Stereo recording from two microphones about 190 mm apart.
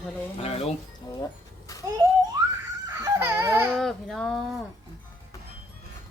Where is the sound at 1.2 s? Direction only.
20° left (ahead or behind).